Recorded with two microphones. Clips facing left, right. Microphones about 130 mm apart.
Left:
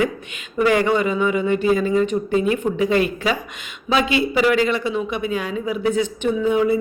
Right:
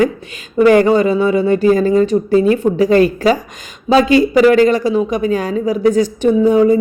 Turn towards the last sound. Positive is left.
turn(degrees=-40)  # may be behind; listen again after turning